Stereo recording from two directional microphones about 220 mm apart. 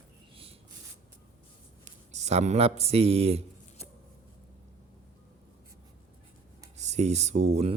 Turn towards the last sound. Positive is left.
turn(degrees=-30)  # may be behind; listen again after turning